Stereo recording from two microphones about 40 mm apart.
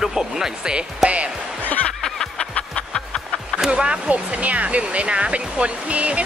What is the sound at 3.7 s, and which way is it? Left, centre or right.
Speech, right.